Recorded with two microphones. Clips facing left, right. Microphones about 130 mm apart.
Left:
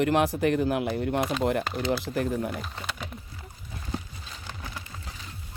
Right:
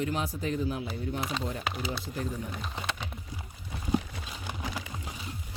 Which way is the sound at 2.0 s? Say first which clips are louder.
Left 7 dB; 80° left.